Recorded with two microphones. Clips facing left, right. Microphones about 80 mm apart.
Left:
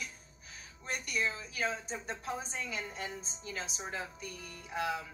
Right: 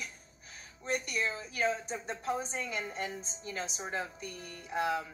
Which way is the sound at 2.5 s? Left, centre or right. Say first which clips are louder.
Right 3 dB; right.